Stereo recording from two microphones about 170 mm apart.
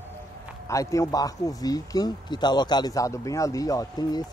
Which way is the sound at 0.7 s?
20° left (ahead or behind).